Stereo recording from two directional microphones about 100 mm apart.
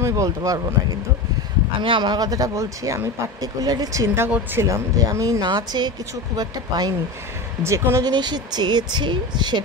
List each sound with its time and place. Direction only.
0.0 s speech: 35° right (ahead or behind)
1.8 s speech: 50° right (ahead or behind)
7.6 s speech: 25° right (ahead or behind)
8.0 s speech: 45° right (ahead or behind)